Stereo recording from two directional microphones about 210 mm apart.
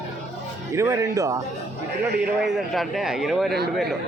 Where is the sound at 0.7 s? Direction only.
15° right (ahead or behind).